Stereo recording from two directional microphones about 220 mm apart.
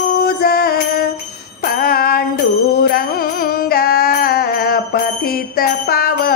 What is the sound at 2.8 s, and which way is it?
Music, 45° left (ahead or behind).